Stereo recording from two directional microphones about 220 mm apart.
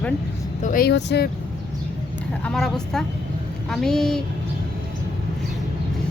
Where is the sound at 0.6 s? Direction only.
40° left (ahead or behind).